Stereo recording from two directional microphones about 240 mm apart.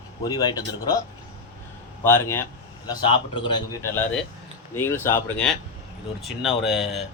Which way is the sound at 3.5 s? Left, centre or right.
Centre.